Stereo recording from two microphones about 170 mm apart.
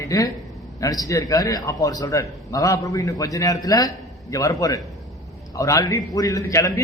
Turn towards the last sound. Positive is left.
turn(degrees=20)  # may be behind; listen again after turning